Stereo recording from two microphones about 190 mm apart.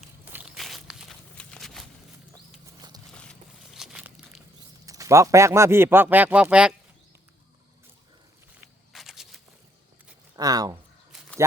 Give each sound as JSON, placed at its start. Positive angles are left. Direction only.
{"t": 0.3, "sound": "walk", "side_deg": -5}
{"t": 3.1, "sound": "a sound", "side_deg": 5}
{"t": 4.9, "sound": "a man's voice", "side_deg": -15}
{"t": 8.6, "sound": "walk", "side_deg": 0}
{"t": 10.3, "sound": "speech", "side_deg": -20}